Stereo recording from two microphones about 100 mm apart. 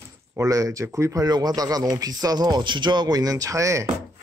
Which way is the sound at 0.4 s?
30° right (ahead or behind).